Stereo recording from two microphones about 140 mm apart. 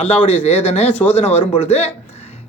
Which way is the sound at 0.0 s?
45° left (ahead or behind).